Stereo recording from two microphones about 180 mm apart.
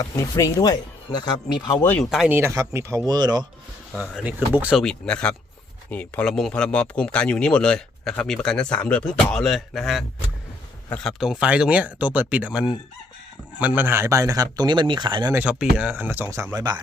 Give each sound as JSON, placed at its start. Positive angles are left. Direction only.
{"t": 0.0, "sound": "speech", "side_deg": 20}
{"t": 1.9, "sound": "speech", "side_deg": 0}
{"t": 3.9, "sound": "speech", "side_deg": -5}
{"t": 15.3, "sound": "speech", "side_deg": -10}